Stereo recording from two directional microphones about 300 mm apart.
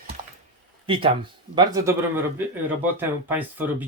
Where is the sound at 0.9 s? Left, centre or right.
Centre.